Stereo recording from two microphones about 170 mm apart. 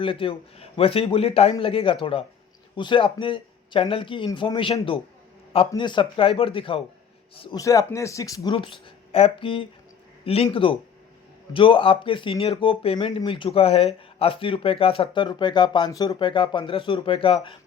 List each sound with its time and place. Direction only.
0.0 s speech: 30° left (ahead or behind)
7.6 s speech: 20° left (ahead or behind)
9.1 s speech: 35° left (ahead or behind)